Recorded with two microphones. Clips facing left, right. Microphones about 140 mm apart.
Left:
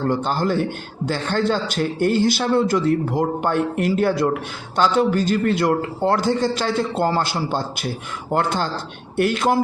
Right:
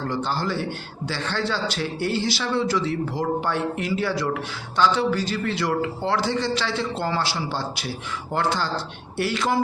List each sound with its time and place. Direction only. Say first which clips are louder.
0.1 s a man's voice: left 4 dB; 50° left (ahead or behind)